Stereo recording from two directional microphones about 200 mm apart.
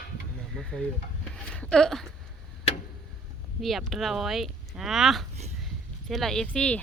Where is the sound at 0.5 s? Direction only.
5° left (ahead or behind).